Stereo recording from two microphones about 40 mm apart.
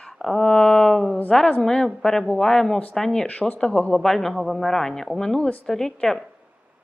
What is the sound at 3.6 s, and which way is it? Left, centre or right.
Speech, left.